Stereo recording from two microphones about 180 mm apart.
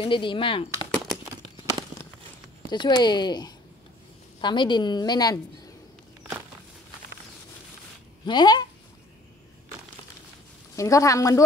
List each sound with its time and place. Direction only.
0.0 s a woman's voice: 25° left (ahead or behind)
2.7 s a woman's voice: 25° left (ahead or behind)
8.3 s a woman's voice: 25° left (ahead or behind)
10.8 s speech: 15° left (ahead or behind)